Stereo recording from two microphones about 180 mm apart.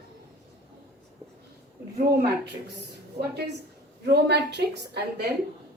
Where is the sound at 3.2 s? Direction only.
60° right (ahead or behind).